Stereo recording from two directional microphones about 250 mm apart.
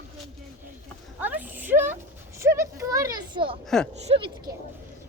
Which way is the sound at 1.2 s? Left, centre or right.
Centre.